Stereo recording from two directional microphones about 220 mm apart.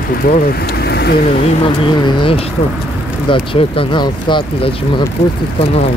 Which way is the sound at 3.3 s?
25° left (ahead or behind).